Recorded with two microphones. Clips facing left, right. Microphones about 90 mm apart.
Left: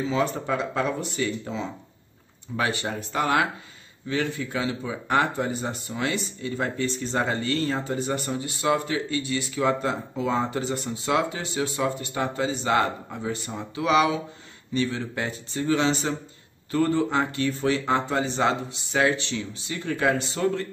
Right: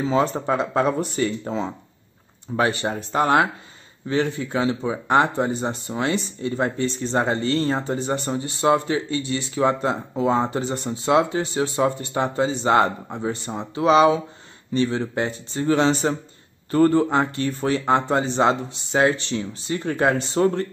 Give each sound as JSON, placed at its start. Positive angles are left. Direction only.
{"t": 0.0, "sound": "speech", "side_deg": -35}